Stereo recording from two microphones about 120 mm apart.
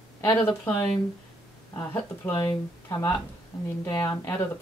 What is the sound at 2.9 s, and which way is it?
Speech, 25° left (ahead or behind).